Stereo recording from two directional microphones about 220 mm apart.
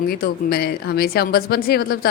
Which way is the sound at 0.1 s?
45° left (ahead or behind).